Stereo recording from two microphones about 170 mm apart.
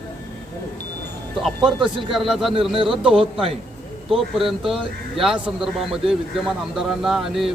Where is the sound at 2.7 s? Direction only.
30° right (ahead or behind).